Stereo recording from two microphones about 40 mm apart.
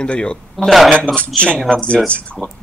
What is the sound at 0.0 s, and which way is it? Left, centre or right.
Speech, left.